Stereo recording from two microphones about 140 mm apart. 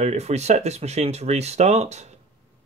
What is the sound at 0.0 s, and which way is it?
Speech, 55° right (ahead or behind).